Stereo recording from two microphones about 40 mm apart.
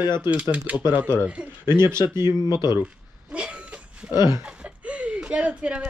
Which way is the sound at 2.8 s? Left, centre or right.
Right.